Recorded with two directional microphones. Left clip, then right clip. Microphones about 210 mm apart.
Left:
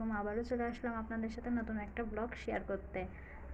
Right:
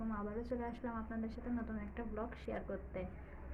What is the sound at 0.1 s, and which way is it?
A woman's voice, 30° left (ahead or behind).